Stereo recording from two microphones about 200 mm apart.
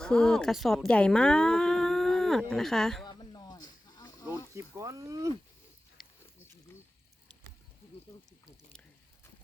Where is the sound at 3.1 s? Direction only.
20° left (ahead or behind).